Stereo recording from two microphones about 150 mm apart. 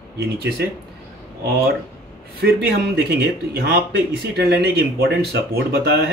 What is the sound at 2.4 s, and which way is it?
Speech, 90° right.